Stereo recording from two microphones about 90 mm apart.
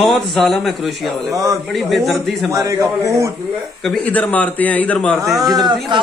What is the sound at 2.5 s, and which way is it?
Speech, 35° right (ahead or behind).